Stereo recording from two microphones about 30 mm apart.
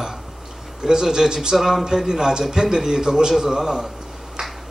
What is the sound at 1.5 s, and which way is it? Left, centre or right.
A man's voice, centre.